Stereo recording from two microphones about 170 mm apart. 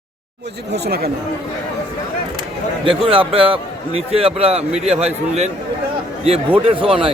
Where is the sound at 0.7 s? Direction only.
70° right (ahead or behind).